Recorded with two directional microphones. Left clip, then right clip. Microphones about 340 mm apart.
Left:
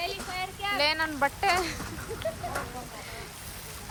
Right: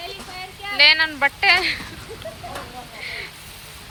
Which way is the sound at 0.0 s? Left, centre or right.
Centre.